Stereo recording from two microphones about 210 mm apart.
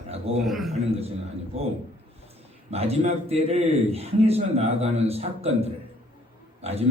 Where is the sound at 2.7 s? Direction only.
30° right (ahead or behind).